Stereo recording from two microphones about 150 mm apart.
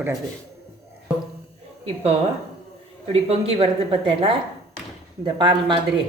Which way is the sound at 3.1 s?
40° right (ahead or behind).